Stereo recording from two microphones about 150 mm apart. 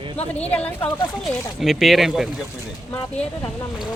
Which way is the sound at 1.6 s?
Centre (ahead or behind).